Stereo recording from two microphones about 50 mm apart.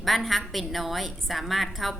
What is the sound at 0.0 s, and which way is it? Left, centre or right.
A woman's voice, centre.